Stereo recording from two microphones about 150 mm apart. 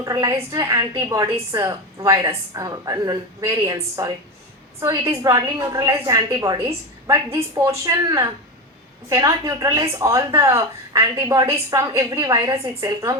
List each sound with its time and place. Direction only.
0.0 s a woman's voice: 25° right (ahead or behind)